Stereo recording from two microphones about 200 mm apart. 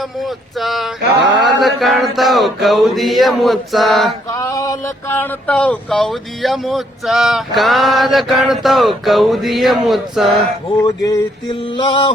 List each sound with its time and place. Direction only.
0.2 s speech: centre (ahead or behind)
4.3 s speech: 15° left (ahead or behind); by 10.8 s centre (ahead or behind)
10.8 s a sound: 20° left (ahead or behind)
11.7 s mantra: 25° left (ahead or behind)